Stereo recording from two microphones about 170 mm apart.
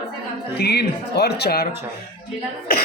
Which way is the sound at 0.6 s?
70° left (ahead or behind).